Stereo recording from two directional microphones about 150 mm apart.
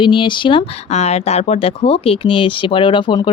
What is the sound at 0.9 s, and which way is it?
Speech, 45° left (ahead or behind).